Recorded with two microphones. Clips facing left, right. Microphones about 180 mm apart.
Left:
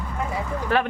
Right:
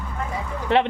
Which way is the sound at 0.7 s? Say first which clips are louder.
Right 3 dB; 25° right (ahead or behind).